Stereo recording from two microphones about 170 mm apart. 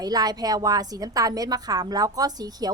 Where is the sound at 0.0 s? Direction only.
20° right (ahead or behind).